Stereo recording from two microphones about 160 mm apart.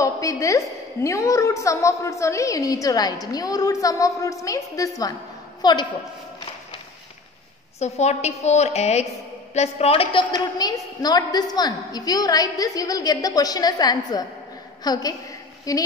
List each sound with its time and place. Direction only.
0.0 s a woman's voice: 20° left (ahead or behind)
7.8 s a woman's voice: 45° left (ahead or behind)
10.3 s a woman's voice: 25° left (ahead or behind)